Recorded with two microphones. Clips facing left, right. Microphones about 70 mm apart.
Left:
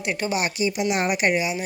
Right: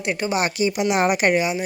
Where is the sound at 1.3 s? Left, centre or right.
Right.